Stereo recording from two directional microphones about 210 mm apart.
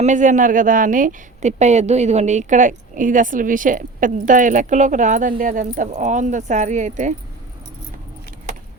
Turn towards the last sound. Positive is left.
turn(degrees=-35)  # may be behind; listen again after turning